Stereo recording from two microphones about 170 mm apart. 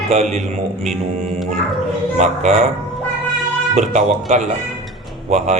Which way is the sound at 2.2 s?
40° right (ahead or behind).